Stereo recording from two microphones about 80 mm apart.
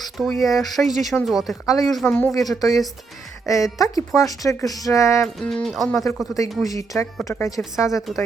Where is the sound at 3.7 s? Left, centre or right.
Left.